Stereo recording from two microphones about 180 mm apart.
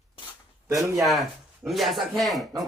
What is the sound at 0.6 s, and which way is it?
Speech, 20° right (ahead or behind).